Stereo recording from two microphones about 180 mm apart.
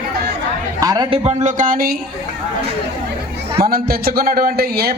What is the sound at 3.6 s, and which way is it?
A man's voice, 55° right (ahead or behind).